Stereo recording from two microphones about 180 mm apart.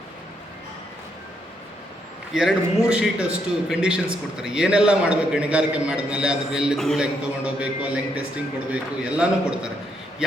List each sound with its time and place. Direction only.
2.3 s a man's voice: 5° right (ahead or behind)